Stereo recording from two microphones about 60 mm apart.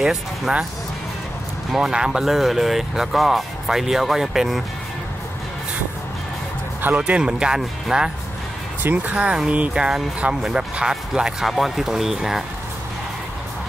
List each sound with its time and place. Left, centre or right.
0.0 s speech: centre
1.7 s speech: centre
7.0 s speech: centre
8.8 s speech: right
9.1 s speech: centre